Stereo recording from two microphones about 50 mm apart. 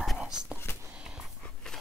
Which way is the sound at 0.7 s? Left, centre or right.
Left.